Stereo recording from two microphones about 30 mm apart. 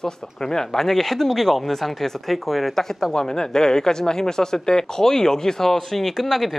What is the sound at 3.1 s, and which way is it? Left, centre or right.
Speech, left.